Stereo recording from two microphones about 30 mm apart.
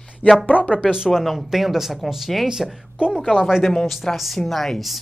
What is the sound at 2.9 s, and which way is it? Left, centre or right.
Speech, right.